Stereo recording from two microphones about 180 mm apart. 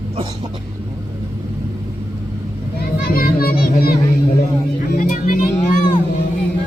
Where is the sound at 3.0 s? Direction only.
55° left (ahead or behind).